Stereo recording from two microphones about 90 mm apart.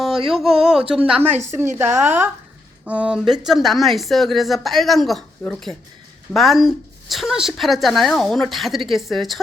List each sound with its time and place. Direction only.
0.3 s speech: 5° right (ahead or behind)
1.2 s a woman's voice: 25° right (ahead or behind)
2.8 s speech: 15° right (ahead or behind)
3.4 s speech: centre (ahead or behind)